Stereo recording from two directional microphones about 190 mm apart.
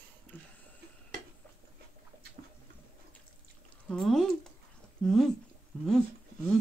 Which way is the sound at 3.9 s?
5° left (ahead or behind).